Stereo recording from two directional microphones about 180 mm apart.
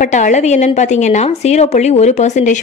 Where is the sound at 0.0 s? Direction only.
40° left (ahead or behind).